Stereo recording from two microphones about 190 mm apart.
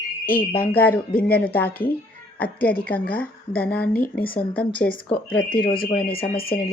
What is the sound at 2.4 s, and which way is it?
Speech, 50° left (ahead or behind).